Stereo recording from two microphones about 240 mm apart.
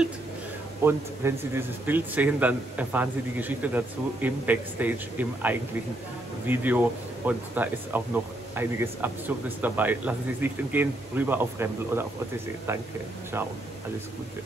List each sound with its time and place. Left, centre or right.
0.8 s a man's voice: centre